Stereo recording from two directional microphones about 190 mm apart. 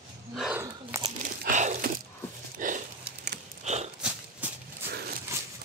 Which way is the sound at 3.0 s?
60° right (ahead or behind).